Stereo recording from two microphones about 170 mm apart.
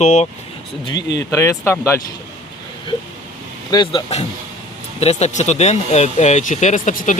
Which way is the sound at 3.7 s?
25° left (ahead or behind).